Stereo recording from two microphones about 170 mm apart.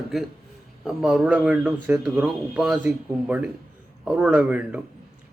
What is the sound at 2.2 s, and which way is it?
Speech, centre (ahead or behind).